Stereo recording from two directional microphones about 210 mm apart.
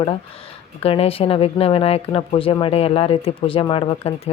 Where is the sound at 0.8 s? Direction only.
25° left (ahead or behind).